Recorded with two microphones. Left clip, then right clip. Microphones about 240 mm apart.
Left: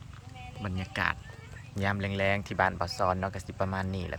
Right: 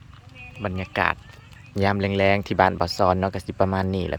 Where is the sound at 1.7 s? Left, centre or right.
Right.